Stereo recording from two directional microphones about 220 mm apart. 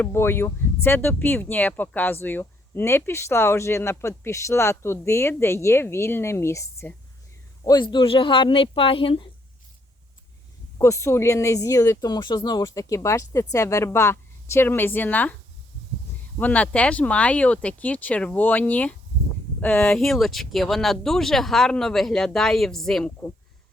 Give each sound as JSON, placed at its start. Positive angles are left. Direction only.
{"t": 0.0, "sound": "speech", "side_deg": 10}
{"t": 10.8, "sound": "speech", "side_deg": 15}
{"t": 16.4, "sound": "speech", "side_deg": 5}